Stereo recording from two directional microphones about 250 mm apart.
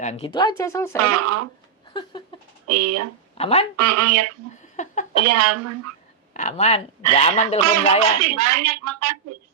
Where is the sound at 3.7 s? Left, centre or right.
Right.